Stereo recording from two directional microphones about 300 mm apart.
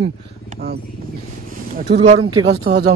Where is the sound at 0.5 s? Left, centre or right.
Right.